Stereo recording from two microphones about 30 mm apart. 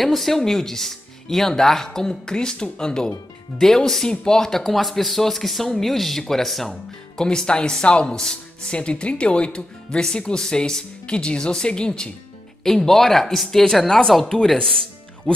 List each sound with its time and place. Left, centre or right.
0.0 s speech: centre; by 3.1 s left
3.5 s speech: centre
4.1 s speech: left
4.4 s speech: centre
4.7 s speech: centre
6.7 s speech: left
12.6 s speech: centre
15.3 s music: left